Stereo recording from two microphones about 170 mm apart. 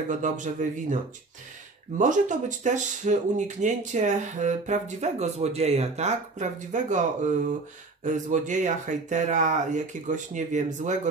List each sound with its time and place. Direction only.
0.1 s speech: 50° right (ahead or behind)
2.0 s speech: 45° right (ahead or behind)